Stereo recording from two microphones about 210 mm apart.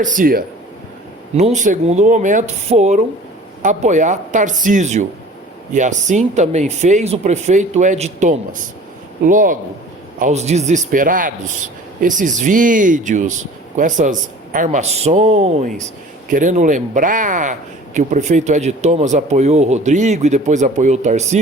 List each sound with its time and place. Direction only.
0.0 s a man's voice: 40° right (ahead or behind)